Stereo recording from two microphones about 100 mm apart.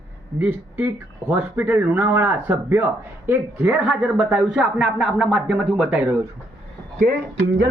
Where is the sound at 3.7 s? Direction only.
10° right (ahead or behind).